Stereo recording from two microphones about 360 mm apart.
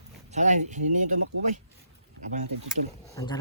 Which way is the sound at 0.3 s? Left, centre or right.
Centre.